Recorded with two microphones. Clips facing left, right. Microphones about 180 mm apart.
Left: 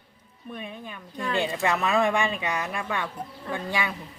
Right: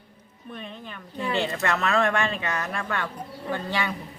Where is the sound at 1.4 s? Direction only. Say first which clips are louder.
Left 2 dB; 15° left (ahead or behind).